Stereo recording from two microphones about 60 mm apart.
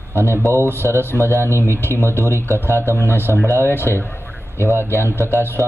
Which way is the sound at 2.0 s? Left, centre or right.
Right.